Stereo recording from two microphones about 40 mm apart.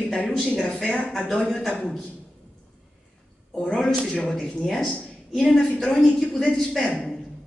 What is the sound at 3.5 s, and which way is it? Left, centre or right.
Speech, centre.